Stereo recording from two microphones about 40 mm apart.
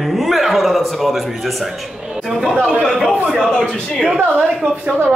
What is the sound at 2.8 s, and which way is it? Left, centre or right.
Speech, centre.